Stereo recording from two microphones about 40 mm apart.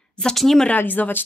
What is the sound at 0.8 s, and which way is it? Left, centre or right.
Speech, left.